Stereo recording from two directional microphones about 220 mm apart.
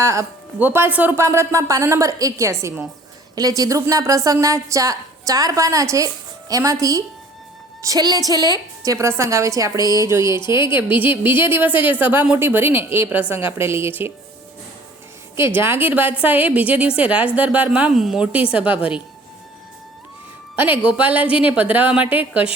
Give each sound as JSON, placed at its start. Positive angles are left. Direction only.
{"t": 0.0, "sound": "a woman's voice", "side_deg": -15}
{"t": 10.2, "sound": "speech", "side_deg": 20}
{"t": 10.8, "sound": "a woman's voice", "side_deg": -10}
{"t": 15.4, "sound": "a woman's voice", "side_deg": -10}
{"t": 20.6, "sound": "a woman's voice", "side_deg": -5}